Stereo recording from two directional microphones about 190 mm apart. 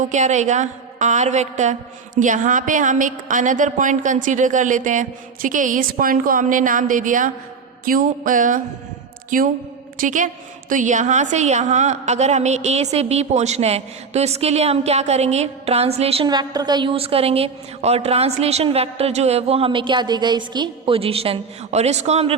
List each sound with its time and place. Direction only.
0.0 s a woman's voice: 40° right (ahead or behind)
10.0 s a woman's voice: 40° right (ahead or behind)